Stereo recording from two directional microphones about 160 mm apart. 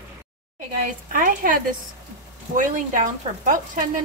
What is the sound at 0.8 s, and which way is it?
Speech, 55° right (ahead or behind).